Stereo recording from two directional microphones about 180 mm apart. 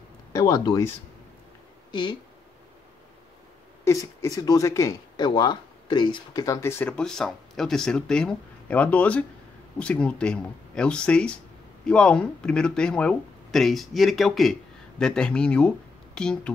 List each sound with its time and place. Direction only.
0.3 s speech: 20° left (ahead or behind)
3.8 s speech: 15° left (ahead or behind)